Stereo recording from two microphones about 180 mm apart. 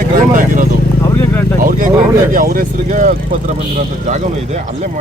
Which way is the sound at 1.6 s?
45° right (ahead or behind).